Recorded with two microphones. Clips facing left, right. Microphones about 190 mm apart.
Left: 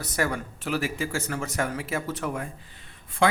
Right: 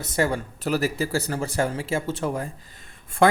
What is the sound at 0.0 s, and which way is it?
Speech, 25° right (ahead or behind).